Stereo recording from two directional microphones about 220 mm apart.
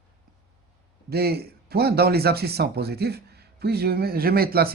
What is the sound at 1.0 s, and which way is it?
Speech, 45° right (ahead or behind).